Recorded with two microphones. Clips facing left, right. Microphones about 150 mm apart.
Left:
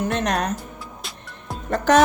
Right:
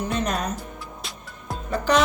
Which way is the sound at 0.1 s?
60° left (ahead or behind).